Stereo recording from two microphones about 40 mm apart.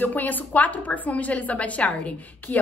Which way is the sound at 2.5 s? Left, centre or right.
Left.